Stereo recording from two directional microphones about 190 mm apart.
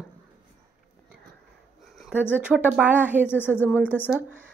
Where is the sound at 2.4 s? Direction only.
5° right (ahead or behind).